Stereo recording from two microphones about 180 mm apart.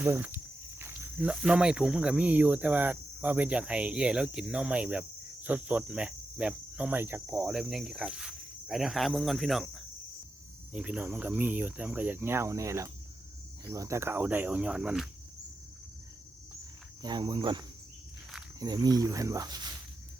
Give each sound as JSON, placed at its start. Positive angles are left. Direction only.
{"t": 0.0, "sound": "speech", "side_deg": -10}
{"t": 17.0, "sound": "speech", "side_deg": -25}
{"t": 18.6, "sound": "speech", "side_deg": -20}